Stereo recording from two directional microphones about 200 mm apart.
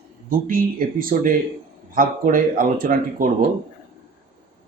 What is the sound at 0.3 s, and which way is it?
A man's voice, 45° right (ahead or behind).